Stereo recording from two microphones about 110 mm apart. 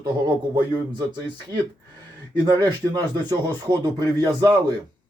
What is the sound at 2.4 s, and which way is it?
A man's voice, 35° right (ahead or behind).